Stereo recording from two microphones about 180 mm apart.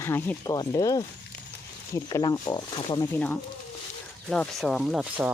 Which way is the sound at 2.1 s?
20° left (ahead or behind).